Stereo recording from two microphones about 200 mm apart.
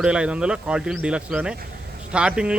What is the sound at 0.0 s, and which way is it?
A man's voice, 5° right (ahead or behind).